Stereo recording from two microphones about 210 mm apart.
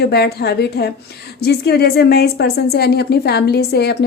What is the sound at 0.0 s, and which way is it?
A woman's voice, 50° left (ahead or behind).